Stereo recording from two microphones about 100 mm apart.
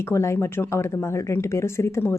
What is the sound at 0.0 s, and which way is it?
Speech, 25° left (ahead or behind).